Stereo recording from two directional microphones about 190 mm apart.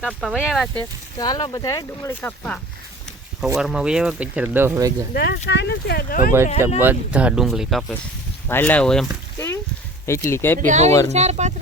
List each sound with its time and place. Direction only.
0.0 s speech: centre (ahead or behind)
1.2 s speech: 20° left (ahead or behind)
3.5 s speech: 5° right (ahead or behind)
5.1 s speech: 60° left (ahead or behind)
6.7 s speech: 10° right (ahead or behind)
10.1 s speech: 15° left (ahead or behind)
10.7 s speech: 35° right (ahead or behind)